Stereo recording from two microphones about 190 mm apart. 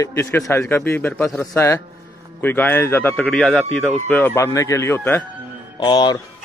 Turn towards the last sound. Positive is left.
turn(degrees=20)  # may be behind; listen again after turning